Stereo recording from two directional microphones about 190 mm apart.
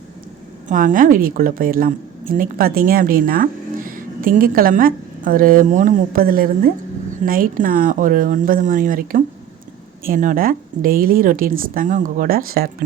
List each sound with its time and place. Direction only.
0.7 s a woman's voice: 45° right (ahead or behind)